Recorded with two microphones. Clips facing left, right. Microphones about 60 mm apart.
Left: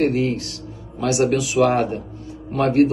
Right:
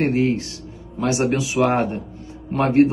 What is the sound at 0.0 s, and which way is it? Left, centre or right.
A man's voice, right.